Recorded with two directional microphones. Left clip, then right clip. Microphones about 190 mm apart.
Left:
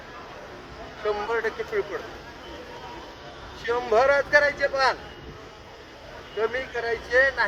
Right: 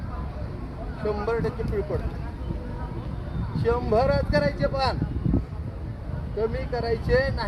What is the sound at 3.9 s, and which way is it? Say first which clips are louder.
Speech: left 6 dB; centre (ahead or behind).